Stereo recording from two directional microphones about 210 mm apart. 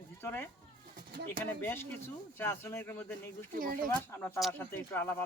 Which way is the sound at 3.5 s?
40° right (ahead or behind).